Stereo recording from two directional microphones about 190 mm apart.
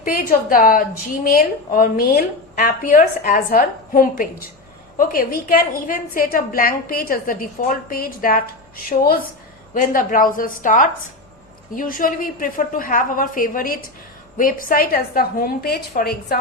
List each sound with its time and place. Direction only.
0.0 s a woman's voice: 50° left (ahead or behind)